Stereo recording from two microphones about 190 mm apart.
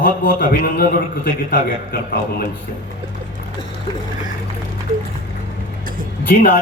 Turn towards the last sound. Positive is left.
turn(degrees=45)  # may be behind; listen again after turning